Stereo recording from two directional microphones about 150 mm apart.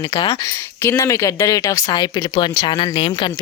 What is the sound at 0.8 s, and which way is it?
Speech, 20° left (ahead or behind).